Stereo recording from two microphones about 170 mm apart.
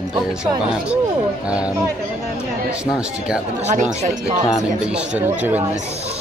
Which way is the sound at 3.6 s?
45° right (ahead or behind).